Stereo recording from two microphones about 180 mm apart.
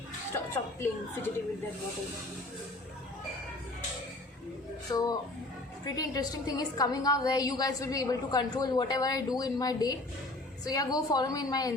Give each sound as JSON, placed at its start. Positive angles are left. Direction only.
{"t": 0.3, "sound": "a woman's voice", "side_deg": 15}
{"t": 4.9, "sound": "a woman's voice", "side_deg": 20}